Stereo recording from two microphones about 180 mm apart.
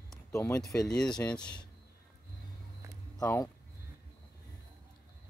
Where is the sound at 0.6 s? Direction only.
5° left (ahead or behind).